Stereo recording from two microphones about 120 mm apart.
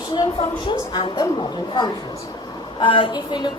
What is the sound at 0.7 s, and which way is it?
Speech, 40° left (ahead or behind).